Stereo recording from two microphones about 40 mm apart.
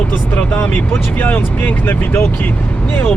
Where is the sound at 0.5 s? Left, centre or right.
Left.